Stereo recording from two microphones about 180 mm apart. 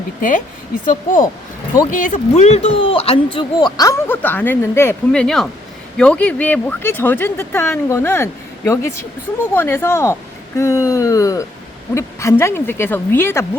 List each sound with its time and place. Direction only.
0.2 s speech: 50° left (ahead or behind); by 3.2 s 30° left (ahead or behind)
3.3 s speech: 20° left (ahead or behind)